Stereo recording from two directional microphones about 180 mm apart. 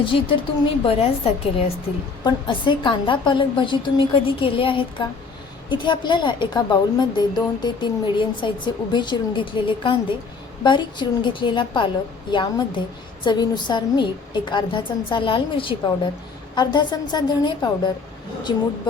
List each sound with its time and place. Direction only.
0.0 s a woman's voice: 30° left (ahead or behind)